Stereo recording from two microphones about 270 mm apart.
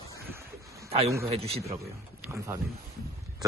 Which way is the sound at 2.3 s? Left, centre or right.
Centre.